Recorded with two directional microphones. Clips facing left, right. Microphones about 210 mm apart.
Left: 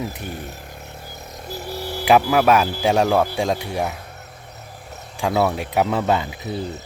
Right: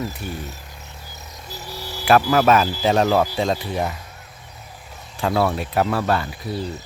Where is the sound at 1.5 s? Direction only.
55° left (ahead or behind).